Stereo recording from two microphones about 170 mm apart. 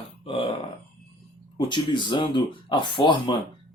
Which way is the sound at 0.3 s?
30° left (ahead or behind).